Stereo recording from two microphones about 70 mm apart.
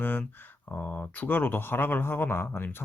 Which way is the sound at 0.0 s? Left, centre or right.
Left.